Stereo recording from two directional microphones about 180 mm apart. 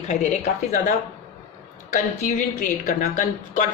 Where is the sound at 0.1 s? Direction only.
40° left (ahead or behind).